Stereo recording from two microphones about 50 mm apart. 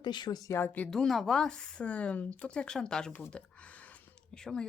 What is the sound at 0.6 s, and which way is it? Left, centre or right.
Speech, left.